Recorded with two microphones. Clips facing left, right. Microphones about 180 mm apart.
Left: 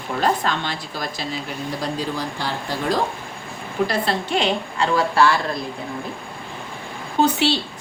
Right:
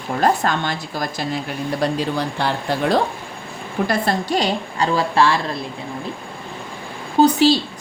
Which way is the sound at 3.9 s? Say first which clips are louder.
Right 3 dB; 45° right (ahead or behind).